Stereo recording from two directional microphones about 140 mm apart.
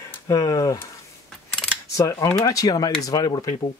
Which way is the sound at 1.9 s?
25° left (ahead or behind).